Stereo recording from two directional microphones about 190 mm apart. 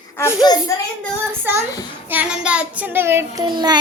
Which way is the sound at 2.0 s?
5° right (ahead or behind).